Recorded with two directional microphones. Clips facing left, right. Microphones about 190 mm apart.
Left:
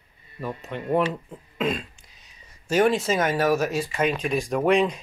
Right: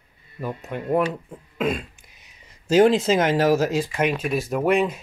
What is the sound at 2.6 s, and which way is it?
Speech, 20° right (ahead or behind).